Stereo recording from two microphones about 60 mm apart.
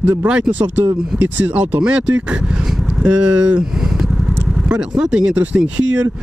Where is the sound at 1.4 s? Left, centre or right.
Right.